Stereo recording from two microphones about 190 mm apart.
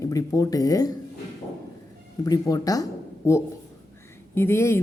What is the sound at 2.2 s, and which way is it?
Speech, 20° left (ahead or behind).